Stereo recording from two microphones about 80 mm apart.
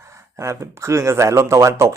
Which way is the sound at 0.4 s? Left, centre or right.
Right.